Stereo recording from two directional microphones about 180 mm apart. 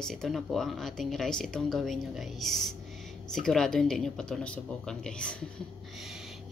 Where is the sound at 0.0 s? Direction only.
Centre (ahead or behind).